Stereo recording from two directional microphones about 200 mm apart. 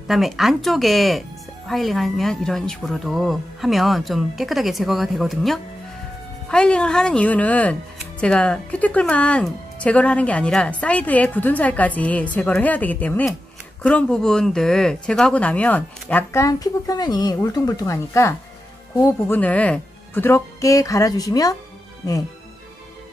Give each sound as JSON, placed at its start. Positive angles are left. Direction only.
{"t": 0.1, "sound": "a woman's voice", "side_deg": 0}